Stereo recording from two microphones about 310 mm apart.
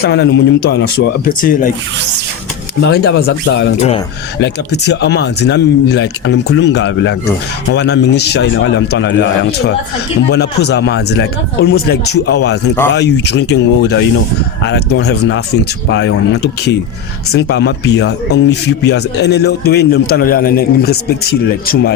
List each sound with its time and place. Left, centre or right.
0.0 s speech: left
2.8 s speech: left
3.8 s speech: centre
4.4 s speech: left